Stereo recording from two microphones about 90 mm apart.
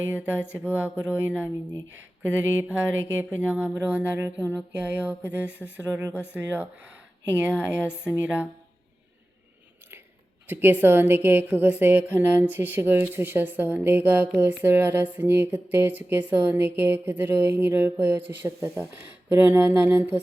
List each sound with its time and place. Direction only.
0.5 s speech: 15° right (ahead or behind)
5.8 s speech: 40° right (ahead or behind)
6.3 s speech: 15° right (ahead or behind)
10.4 s speech: 20° right (ahead or behind)